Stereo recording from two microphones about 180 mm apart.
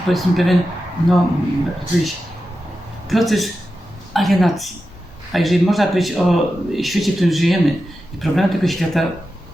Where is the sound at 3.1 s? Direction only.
Centre (ahead or behind).